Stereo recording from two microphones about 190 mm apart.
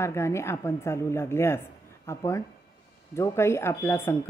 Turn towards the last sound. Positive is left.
turn(degrees=15)  # may be behind; listen again after turning